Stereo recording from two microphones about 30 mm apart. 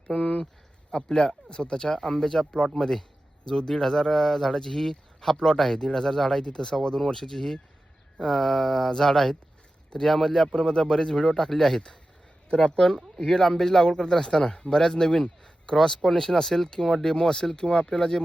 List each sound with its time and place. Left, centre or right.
0.1 s speech: left; by 10.5 s centre
10.5 s speech: left
12.5 s speech: left
14.7 s speech: centre
16.6 s speech: left